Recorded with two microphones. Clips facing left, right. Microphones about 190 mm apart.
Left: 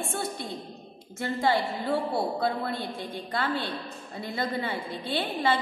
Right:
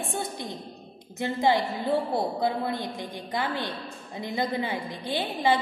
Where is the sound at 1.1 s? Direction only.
20° right (ahead or behind).